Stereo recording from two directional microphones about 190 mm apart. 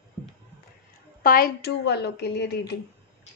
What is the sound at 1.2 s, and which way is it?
A woman's voice, 50° left (ahead or behind).